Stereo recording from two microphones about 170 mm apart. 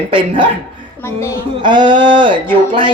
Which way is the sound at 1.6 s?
25° right (ahead or behind).